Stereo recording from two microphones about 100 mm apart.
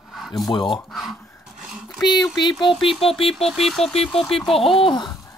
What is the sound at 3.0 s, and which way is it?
Speech, 65° left (ahead or behind).